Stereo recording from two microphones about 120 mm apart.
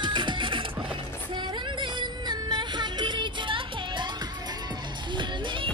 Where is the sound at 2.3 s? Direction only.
40° right (ahead or behind).